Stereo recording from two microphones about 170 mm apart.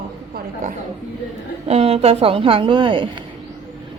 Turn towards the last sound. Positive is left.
turn(degrees=-30)  # may be behind; listen again after turning